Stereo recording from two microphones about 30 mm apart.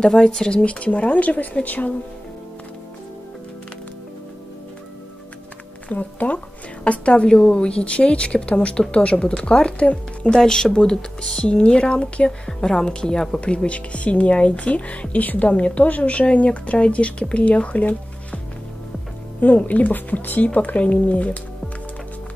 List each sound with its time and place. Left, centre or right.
0.0 s a woman's voice: centre
0.7 s speech: left
5.9 s speech: left
6.8 s speech: left
8.9 s speech: left
9.2 s speech: left
10.2 s speech: left
12.3 s a woman's voice: left
19.4 s speech: left
19.9 s speech: left
20.4 s speech: left